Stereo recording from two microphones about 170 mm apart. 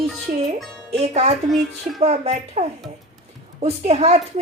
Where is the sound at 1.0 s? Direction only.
40° right (ahead or behind).